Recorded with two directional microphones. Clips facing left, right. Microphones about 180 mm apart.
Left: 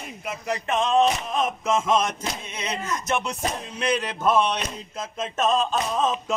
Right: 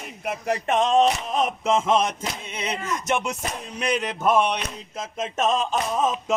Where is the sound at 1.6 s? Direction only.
30° right (ahead or behind).